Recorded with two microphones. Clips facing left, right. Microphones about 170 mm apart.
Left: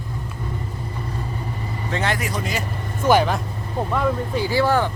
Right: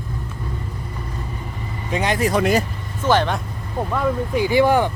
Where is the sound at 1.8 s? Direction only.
15° right (ahead or behind).